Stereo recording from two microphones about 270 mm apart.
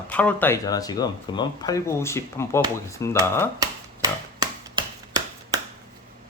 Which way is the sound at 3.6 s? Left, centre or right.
Centre.